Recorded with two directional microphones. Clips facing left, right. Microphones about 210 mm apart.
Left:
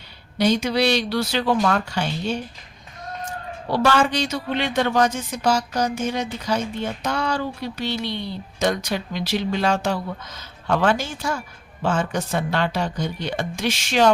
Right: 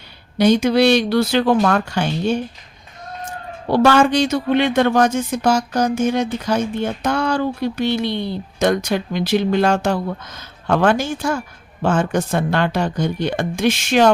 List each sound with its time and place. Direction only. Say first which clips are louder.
0.3 s speech: right 6 dB; 55° right (ahead or behind)
3.7 s speech: right 6 dB; 50° right (ahead or behind)